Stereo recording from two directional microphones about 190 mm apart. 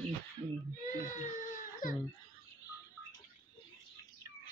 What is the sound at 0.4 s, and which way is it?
Speech, 30° right (ahead or behind).